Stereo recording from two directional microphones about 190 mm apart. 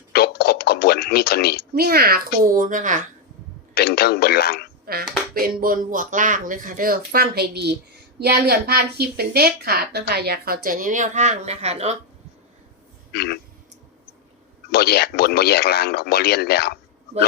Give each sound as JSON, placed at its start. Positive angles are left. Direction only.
{"t": 0.1, "sound": "a sound", "side_deg": 55}
{"t": 1.7, "sound": "a woman's voice", "side_deg": -55}
{"t": 3.8, "sound": "speech", "side_deg": 55}
{"t": 5.3, "sound": "a woman's voice", "side_deg": -50}
{"t": 13.1, "sound": "speech", "side_deg": 55}
{"t": 14.7, "sound": "speech", "side_deg": 55}